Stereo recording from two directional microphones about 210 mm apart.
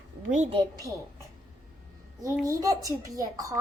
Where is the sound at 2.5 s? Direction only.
15° right (ahead or behind).